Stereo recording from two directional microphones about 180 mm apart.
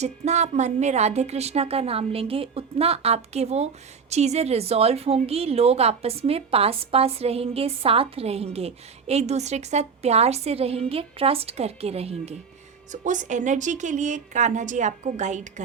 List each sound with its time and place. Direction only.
0.0 s a woman's voice: 40° right (ahead or behind)